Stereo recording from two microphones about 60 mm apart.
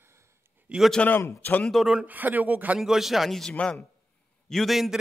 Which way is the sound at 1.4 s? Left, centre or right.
Left.